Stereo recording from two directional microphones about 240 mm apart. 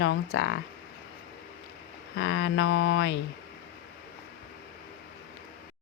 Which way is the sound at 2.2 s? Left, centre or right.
Left.